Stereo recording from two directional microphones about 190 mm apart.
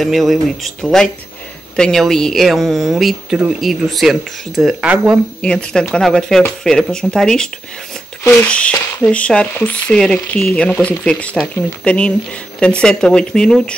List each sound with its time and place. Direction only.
0.0 s speech: centre (ahead or behind)
5.4 s speech: 5° left (ahead or behind)